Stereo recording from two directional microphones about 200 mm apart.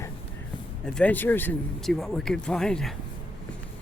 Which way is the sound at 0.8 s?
5° left (ahead or behind).